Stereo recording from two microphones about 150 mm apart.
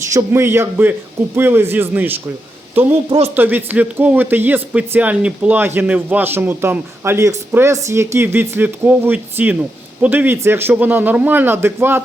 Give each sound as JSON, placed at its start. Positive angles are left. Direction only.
{"t": 0.1, "sound": "speech", "side_deg": -20}
{"t": 3.3, "sound": "speech", "side_deg": -15}